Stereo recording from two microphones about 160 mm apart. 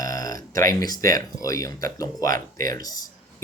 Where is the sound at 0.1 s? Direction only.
20° left (ahead or behind).